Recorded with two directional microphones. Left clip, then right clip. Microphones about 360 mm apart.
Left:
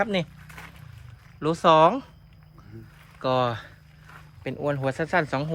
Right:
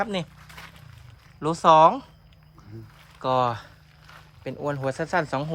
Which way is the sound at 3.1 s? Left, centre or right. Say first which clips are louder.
Right 1 dB; centre.